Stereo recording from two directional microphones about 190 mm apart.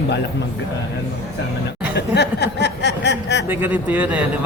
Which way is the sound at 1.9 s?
60° left (ahead or behind).